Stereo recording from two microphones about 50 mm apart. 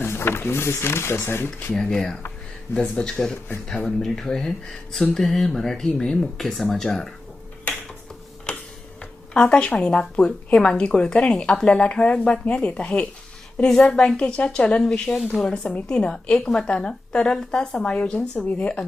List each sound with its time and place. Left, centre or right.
0.0 s speech: left
1.7 s a woman's voice: centre
4.0 s speech: centre
9.3 s a woman's voice: centre
13.6 s a woman's voice: centre
17.8 s a woman's voice: left
18.3 s speech: left